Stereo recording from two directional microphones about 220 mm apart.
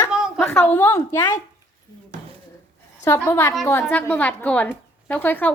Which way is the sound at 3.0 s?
15° left (ahead or behind).